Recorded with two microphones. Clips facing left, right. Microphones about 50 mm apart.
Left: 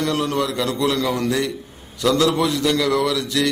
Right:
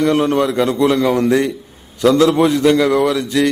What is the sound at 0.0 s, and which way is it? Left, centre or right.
A man's voice, right.